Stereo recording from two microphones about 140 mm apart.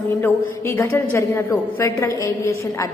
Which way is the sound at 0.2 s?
15° left (ahead or behind).